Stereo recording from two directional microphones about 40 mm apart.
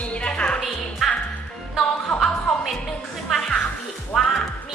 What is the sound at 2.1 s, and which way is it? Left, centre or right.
Music, centre.